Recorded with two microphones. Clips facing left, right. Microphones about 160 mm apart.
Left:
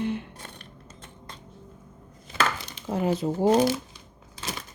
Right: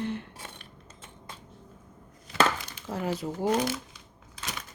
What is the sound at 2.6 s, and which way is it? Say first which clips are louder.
Chopping: left 6 dB; 20° left (ahead or behind).